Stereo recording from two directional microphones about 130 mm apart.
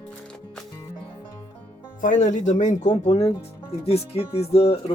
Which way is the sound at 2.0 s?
70° left (ahead or behind).